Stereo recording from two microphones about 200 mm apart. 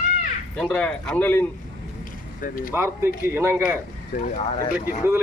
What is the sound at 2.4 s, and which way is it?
Speech, 45° left (ahead or behind).